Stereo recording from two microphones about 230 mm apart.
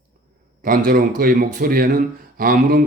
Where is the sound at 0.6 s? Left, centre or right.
Right.